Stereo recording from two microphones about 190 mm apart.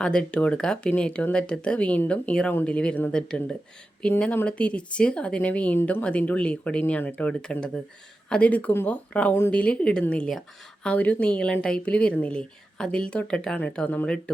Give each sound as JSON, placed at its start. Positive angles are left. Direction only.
{"t": 0.0, "sound": "speech", "side_deg": 5}